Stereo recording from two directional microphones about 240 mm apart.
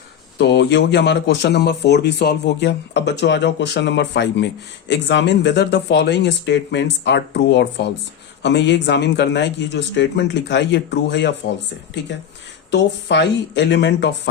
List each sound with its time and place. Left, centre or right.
0.3 s speech: left
12.7 s speech: left